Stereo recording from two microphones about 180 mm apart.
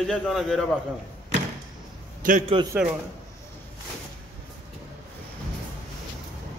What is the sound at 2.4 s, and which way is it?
Speech, 30° right (ahead or behind).